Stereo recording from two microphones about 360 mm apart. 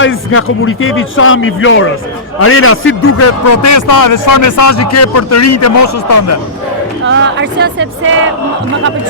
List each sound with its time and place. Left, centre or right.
0.0 s a man's voice: left
7.0 s speech: right